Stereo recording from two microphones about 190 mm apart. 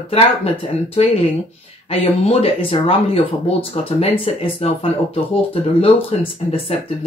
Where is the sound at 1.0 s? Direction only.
30° left (ahead or behind).